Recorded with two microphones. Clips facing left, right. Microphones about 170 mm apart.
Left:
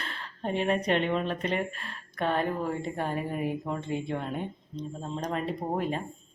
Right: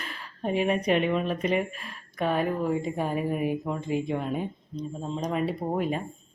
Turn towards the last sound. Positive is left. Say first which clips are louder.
# right 2 dB
turn(degrees=-10)  # may be behind; listen again after turning